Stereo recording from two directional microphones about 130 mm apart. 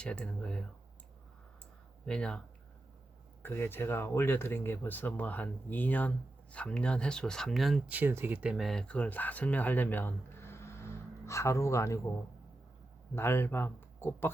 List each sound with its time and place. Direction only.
0.0 s speech: 10° left (ahead or behind)
2.0 s speech: 5° left (ahead or behind)
3.4 s speech: 15° left (ahead or behind); by 7.8 s centre (ahead or behind)
7.9 s speech: 15° right (ahead or behind); by 11.9 s 25° left (ahead or behind)
13.1 s speech: 20° left (ahead or behind)